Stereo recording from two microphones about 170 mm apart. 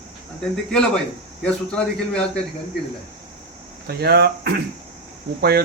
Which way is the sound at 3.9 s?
70° right (ahead or behind).